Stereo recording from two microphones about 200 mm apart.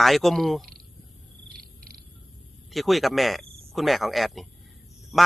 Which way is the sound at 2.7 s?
Centre (ahead or behind).